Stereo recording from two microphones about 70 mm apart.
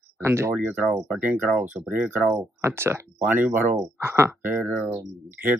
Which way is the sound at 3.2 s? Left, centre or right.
Right.